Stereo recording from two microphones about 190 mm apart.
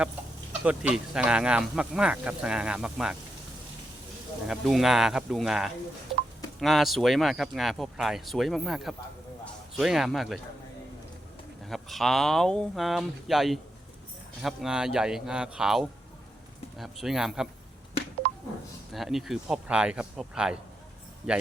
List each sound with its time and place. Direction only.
0.6 s speech: 5° right (ahead or behind)
4.4 s a man's voice: centre (ahead or behind)
11.6 s speech: centre (ahead or behind)
18.9 s speech: centre (ahead or behind)